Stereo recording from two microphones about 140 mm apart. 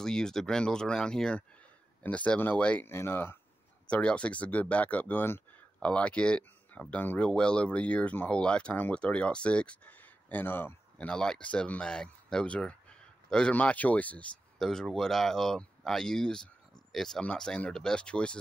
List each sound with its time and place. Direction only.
0.0 s speech: 5° left (ahead or behind)